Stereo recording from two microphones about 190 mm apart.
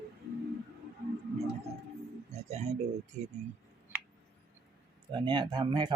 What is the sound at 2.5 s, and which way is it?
Speech, 35° right (ahead or behind).